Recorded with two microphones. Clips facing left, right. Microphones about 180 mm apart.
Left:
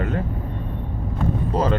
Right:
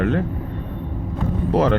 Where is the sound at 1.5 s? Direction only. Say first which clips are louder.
Right 5 dB; 70° right (ahead or behind).